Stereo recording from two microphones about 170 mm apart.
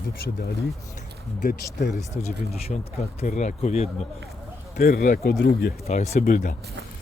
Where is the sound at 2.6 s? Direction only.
40° left (ahead or behind).